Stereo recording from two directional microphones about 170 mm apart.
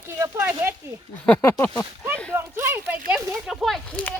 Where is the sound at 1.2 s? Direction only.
15° left (ahead or behind).